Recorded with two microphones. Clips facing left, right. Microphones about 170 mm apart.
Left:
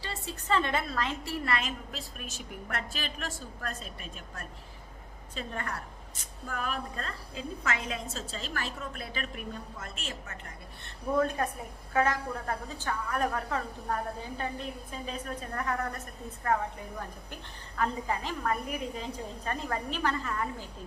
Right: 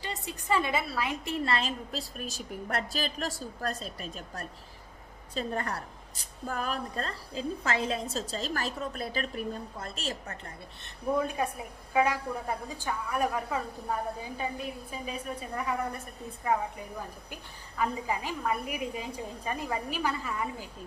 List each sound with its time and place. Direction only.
0.0 s a woman's voice: 15° right (ahead or behind)
1.2 s a woman's voice: 25° right (ahead or behind)
10.8 s a woman's voice: 10° right (ahead or behind)
17.7 s a woman's voice: 10° right (ahead or behind)